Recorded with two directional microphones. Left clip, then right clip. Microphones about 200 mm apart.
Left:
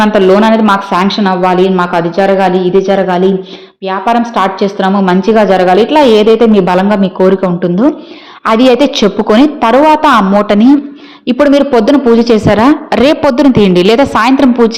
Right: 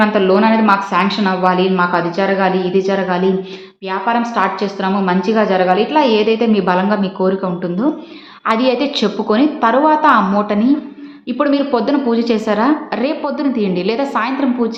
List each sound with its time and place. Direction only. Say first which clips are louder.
0.0 s a woman's voice: left 6 dB; 45° left (ahead or behind)